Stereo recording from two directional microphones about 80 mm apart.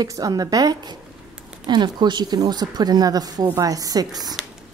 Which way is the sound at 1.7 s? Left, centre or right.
Right.